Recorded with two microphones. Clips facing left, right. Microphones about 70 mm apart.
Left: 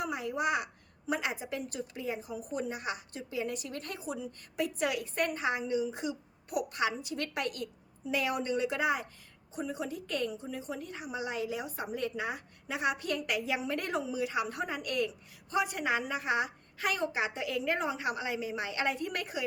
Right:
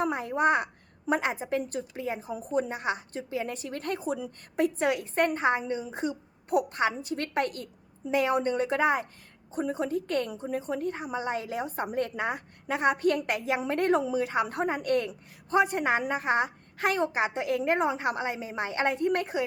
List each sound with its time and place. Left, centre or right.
0.0 s a woman's voice: right